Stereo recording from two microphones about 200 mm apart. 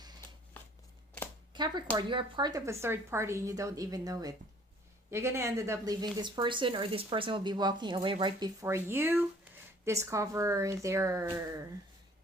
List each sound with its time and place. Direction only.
1.5 s speech: 20° right (ahead or behind)
8.6 s speech: 10° right (ahead or behind)